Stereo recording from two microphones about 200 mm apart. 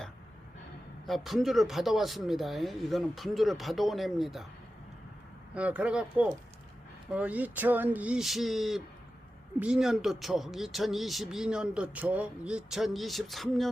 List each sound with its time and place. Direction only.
1.0 s speech: centre (ahead or behind)
5.5 s speech: 5° right (ahead or behind)